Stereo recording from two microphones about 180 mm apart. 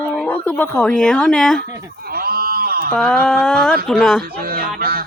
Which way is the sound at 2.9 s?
5° left (ahead or behind).